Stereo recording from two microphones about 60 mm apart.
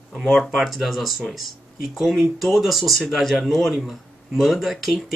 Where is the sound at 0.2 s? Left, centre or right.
Centre.